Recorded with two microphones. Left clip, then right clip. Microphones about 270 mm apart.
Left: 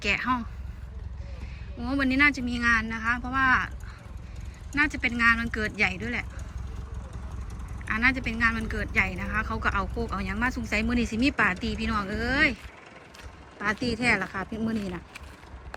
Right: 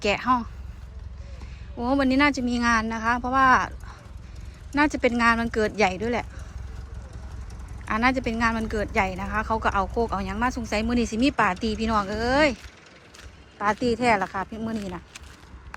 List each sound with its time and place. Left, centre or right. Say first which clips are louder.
0.0 s a woman's voice: right 4 dB; centre
1.8 s a woman's voice: right 2 dB; centre
4.7 s a woman's voice: right 4 dB; centre
7.9 s a woman's voice: right 2 dB; centre
13.6 s a woman's voice: right 5 dB; centre